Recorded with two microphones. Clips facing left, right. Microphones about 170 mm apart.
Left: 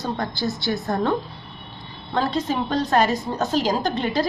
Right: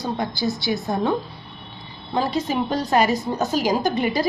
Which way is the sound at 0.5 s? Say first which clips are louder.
Even; 15° right (ahead or behind).